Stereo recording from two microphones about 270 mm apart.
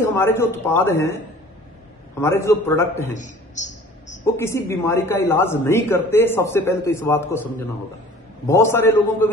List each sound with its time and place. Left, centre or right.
0.0 s a man's voice: centre
3.2 s a sound: left
4.4 s a man's voice: centre